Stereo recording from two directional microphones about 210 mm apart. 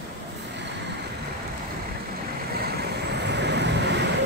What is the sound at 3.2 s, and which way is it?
Vehicle, 55° right (ahead or behind).